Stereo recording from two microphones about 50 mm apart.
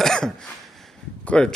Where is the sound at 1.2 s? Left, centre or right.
Left.